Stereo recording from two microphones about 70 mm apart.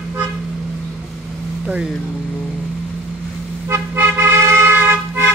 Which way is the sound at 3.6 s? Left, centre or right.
Right.